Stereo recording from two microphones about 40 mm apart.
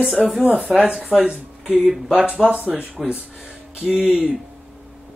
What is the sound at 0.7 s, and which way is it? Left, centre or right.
Speech, centre.